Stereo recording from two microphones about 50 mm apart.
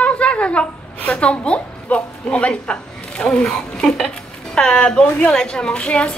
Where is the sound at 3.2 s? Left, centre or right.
Centre.